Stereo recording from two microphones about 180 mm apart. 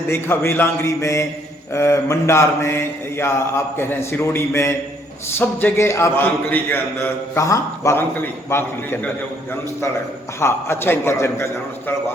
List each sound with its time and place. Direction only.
0.1 s a man's voice: 10° left (ahead or behind)
10.4 s a man's voice: 15° left (ahead or behind)